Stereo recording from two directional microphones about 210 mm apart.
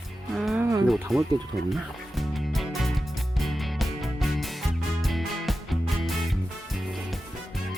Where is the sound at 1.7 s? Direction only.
Centre (ahead or behind).